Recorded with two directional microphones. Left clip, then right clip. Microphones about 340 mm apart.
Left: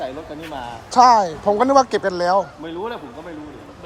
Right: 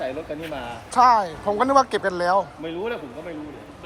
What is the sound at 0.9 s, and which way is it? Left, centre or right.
A woman's voice, centre.